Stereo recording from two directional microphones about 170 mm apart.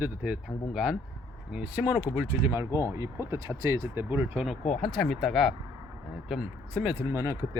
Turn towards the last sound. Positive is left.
turn(degrees=-15)  # may be behind; listen again after turning